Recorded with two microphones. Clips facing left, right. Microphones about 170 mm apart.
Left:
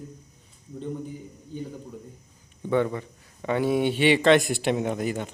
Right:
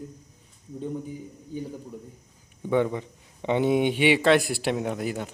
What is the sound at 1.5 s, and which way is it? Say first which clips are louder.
Speech: right 1 dB; 10° right (ahead or behind).